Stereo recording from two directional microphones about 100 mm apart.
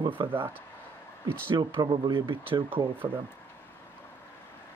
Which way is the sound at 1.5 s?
45° right (ahead or behind).